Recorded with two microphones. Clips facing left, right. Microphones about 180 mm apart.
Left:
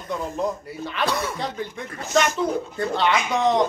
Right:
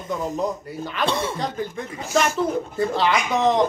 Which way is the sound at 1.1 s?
25° right (ahead or behind).